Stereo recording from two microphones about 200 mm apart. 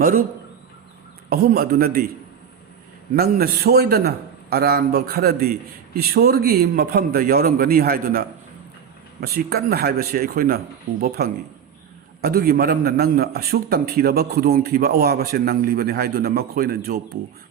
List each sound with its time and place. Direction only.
0.0 s a man's voice: 45° right (ahead or behind)
1.3 s a man's voice: 50° right (ahead or behind)
3.2 s a man's voice: 50° right (ahead or behind)